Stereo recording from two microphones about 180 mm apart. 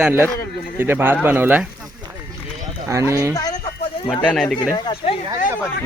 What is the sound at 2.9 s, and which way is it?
Speech, 15° right (ahead or behind).